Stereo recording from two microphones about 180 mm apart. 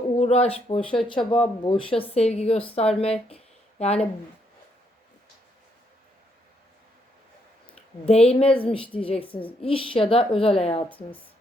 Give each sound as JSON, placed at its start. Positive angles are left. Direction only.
{"t": 0.2, "sound": "a woman's voice", "side_deg": 35}
{"t": 7.7, "sound": "a woman's voice", "side_deg": 35}
{"t": 10.8, "sound": "speech", "side_deg": 10}